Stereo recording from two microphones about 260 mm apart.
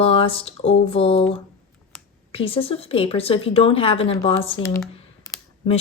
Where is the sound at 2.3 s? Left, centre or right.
Left.